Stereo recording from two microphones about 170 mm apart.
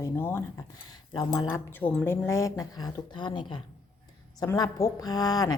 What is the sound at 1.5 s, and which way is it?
A woman's voice, 10° left (ahead or behind).